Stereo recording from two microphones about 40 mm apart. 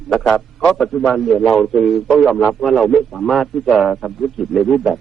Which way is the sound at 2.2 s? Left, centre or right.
Centre.